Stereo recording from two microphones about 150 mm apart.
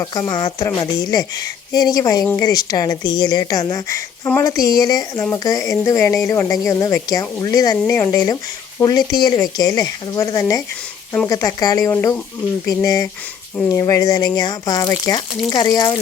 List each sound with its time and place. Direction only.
0.1 s a woman's voice: 25° left (ahead or behind)